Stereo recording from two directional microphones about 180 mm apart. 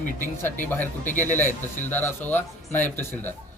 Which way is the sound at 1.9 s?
10° left (ahead or behind).